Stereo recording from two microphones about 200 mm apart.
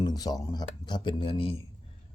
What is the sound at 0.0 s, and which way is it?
Speech, 20° left (ahead or behind).